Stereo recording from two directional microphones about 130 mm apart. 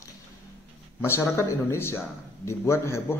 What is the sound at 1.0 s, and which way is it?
A man's voice, 20° left (ahead or behind).